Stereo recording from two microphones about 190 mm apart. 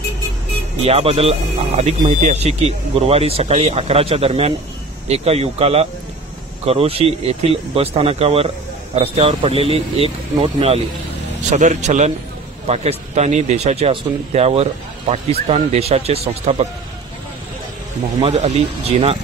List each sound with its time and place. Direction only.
0.8 s speech: 30° right (ahead or behind)
18.2 s speech: 35° right (ahead or behind)